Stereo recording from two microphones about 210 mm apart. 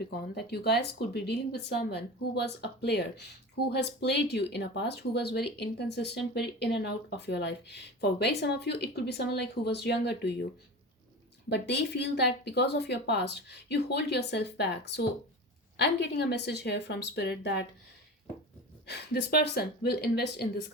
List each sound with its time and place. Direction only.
0.0 s speech: 50° left (ahead or behind)
11.4 s speech: 55° left (ahead or behind)
18.9 s speech: 50° left (ahead or behind)